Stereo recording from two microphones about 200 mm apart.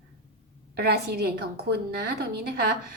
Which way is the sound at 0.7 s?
55° right (ahead or behind).